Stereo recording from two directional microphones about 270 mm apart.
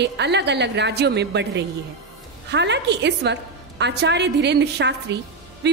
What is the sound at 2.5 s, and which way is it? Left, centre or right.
A woman's voice, right.